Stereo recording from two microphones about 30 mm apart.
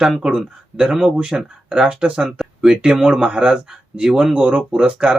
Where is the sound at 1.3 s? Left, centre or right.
Right.